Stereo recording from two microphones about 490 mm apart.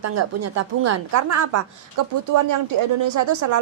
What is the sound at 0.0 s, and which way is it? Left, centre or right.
Speech, right.